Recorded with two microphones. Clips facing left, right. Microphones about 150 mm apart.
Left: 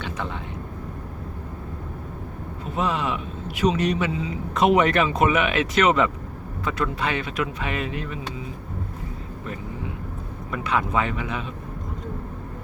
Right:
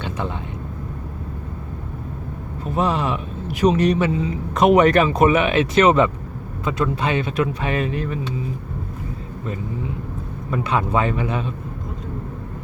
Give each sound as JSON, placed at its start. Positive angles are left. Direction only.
{"t": 2.7, "sound": "speech", "side_deg": -40}
{"t": 10.5, "sound": "speech", "side_deg": -30}